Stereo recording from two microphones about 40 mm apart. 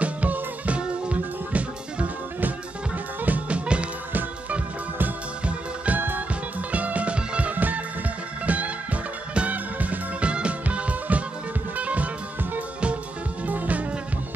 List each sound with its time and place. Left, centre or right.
0.0 s music: right
3.4 s music: right
5.4 s music: right
5.9 s music: right
6.7 s music: right
7.5 s music: right
10.2 s music: right
13.5 s music: right